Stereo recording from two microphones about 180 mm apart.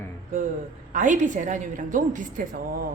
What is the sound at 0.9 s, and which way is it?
A woman's voice, 45° right (ahead or behind).